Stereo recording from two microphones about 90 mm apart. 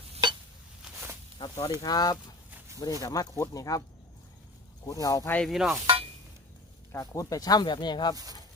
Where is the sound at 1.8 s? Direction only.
45° left (ahead or behind).